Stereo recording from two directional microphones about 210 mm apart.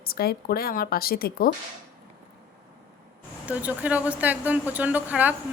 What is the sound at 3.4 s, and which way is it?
Speech, 5° right (ahead or behind).